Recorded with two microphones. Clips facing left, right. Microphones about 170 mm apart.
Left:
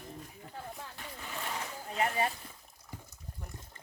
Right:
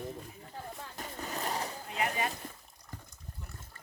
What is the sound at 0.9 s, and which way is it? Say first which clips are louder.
Splash: right 4 dB; 40° right (ahead or behind).